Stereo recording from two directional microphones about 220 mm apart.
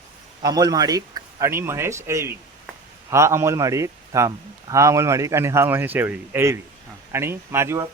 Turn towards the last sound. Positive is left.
turn(degrees=-10)  # may be behind; listen again after turning